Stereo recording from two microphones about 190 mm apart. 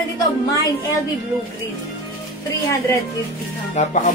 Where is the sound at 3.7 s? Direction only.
40° left (ahead or behind).